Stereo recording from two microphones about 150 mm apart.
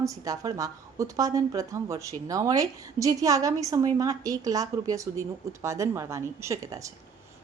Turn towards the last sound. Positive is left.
turn(degrees=-20)  # may be behind; listen again after turning